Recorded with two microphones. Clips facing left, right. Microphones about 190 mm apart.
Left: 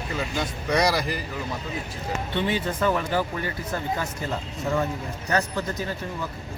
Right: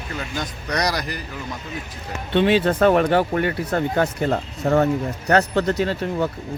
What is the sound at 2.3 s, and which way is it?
Speech, 70° right (ahead or behind).